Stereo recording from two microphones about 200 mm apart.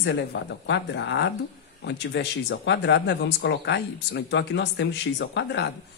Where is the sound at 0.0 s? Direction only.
60° left (ahead or behind).